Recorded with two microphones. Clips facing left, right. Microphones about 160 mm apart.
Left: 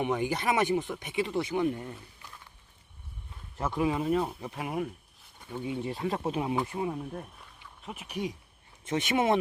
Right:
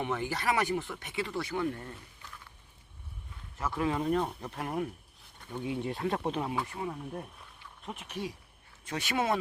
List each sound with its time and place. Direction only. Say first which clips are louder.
0.0 s speech: left 3 dB; 15° left (ahead or behind)
3.6 s speech: left 2 dB; 15° left (ahead or behind)
6.5 s speech: left 4 dB; 20° left (ahead or behind)
7.1 s speech: even; centre (ahead or behind)
7.9 s speech: left 3 dB; 10° left (ahead or behind)